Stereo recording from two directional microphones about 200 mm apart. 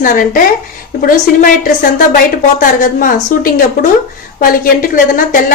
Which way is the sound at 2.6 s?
45° left (ahead or behind).